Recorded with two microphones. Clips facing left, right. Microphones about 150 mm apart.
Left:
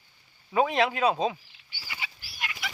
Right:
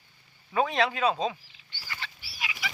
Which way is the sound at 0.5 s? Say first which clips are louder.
Left 2 dB; 15° left (ahead or behind).